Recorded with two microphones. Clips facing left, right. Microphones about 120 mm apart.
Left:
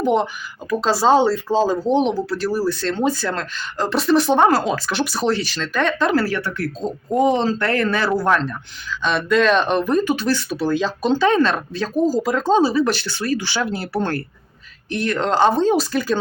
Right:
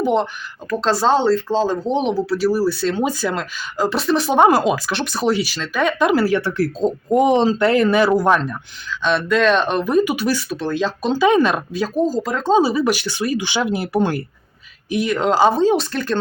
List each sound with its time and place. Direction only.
0.0 s speech: 5° left (ahead or behind)
4.4 s speech: 15° right (ahead or behind)
4.9 s speech: centre (ahead or behind)
6.0 s speech: 15° right (ahead or behind)
8.9 s speech: centre (ahead or behind)
10.5 s speech: centre (ahead or behind)
12.0 s speech: 5° left (ahead or behind)
12.6 s speech: 10° right (ahead or behind)